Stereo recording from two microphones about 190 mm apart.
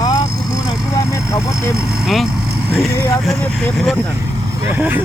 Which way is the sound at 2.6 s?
Centre (ahead or behind).